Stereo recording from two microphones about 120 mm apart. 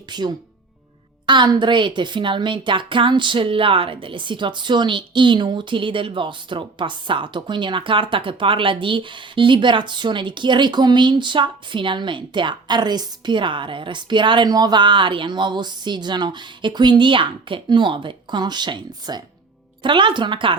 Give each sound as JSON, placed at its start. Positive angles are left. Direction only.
{"t": 0.1, "sound": "a woman's voice", "side_deg": -35}